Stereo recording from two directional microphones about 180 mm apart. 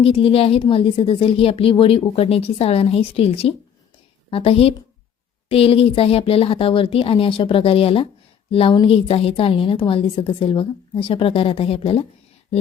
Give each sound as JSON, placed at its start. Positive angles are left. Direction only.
{"t": 0.0, "sound": "speech", "side_deg": 30}